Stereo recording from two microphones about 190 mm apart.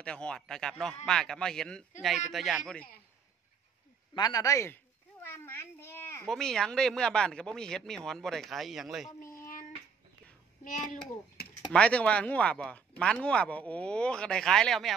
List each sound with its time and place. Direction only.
0.0 s speech: 5° left (ahead or behind)
4.1 s speech: 20° left (ahead or behind)
5.3 s a sound: 10° left (ahead or behind)
6.2 s speech: centre (ahead or behind)
10.6 s a child's voice: 45° left (ahead or behind)
11.7 s speech: 5° left (ahead or behind)